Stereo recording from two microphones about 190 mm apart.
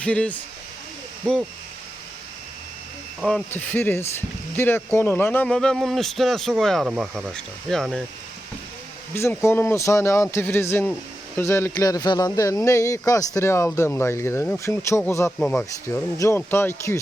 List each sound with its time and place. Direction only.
0.0 s speech: 5° left (ahead or behind)
3.2 s speech: centre (ahead or behind)
9.1 s speech: 15° left (ahead or behind)